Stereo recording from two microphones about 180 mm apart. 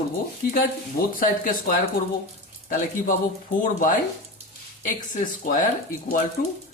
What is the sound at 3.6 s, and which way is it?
Speech, 45° left (ahead or behind).